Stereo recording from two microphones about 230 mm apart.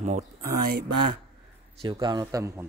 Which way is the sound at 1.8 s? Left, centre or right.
Right.